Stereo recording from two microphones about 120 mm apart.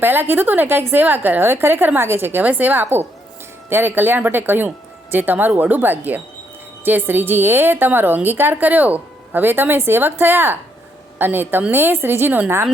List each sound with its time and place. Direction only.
0.0 s a woman's voice: 15° right (ahead or behind)